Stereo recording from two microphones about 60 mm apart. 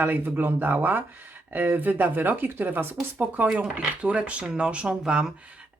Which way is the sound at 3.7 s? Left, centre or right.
Centre.